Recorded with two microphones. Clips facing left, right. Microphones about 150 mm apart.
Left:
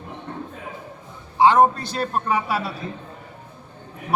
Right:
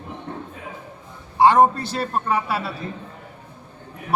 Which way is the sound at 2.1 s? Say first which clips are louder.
Even; 10° left (ahead or behind).